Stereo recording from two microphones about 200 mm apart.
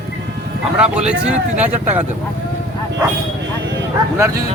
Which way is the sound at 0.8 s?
5° right (ahead or behind).